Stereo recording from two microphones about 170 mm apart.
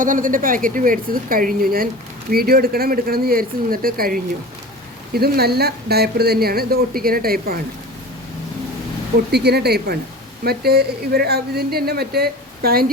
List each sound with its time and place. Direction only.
0.0 s a woman's voice: 50° right (ahead or behind)
9.3 s speech: 70° right (ahead or behind)